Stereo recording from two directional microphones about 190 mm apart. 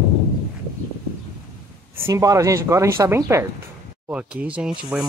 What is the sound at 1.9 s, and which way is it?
Speech, 15° right (ahead or behind).